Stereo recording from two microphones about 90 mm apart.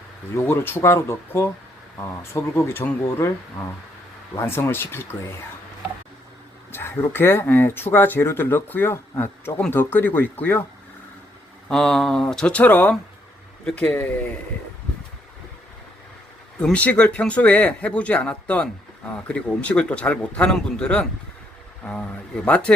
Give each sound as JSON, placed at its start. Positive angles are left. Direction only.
{"t": 0.3, "sound": "speech", "side_deg": 30}
{"t": 6.7, "sound": "speech", "side_deg": 25}
{"t": 11.7, "sound": "speech", "side_deg": 5}
{"t": 16.6, "sound": "speech", "side_deg": 15}